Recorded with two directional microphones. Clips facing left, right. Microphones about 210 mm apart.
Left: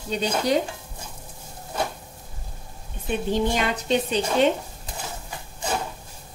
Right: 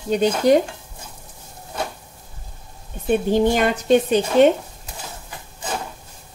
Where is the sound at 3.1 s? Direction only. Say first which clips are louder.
Right 6 dB; 50° right (ahead or behind).